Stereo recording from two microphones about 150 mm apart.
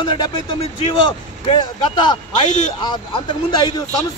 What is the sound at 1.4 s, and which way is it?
A man's voice, 35° left (ahead or behind).